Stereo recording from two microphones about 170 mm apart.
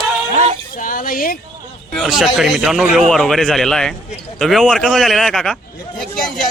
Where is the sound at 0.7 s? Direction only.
55° left (ahead or behind).